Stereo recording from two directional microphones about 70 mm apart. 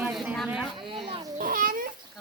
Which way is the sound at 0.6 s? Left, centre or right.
Centre.